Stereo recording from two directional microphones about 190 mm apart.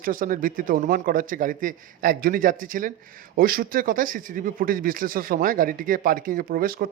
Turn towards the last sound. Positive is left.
turn(degrees=-50)  # may be behind; listen again after turning